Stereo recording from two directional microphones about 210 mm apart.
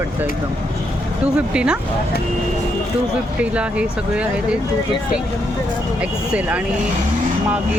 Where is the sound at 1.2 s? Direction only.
5° right (ahead or behind).